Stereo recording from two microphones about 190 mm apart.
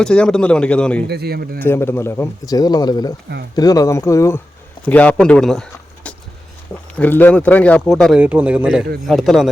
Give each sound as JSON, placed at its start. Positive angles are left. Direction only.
{"t": 0.0, "sound": "a man's voice", "side_deg": 5}
{"t": 1.0, "sound": "speech", "side_deg": -55}
{"t": 1.5, "sound": "a man's voice", "side_deg": 10}